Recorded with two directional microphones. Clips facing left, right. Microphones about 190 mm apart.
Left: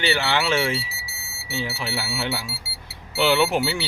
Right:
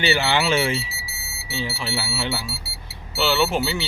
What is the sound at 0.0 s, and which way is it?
Speech, 5° right (ahead or behind).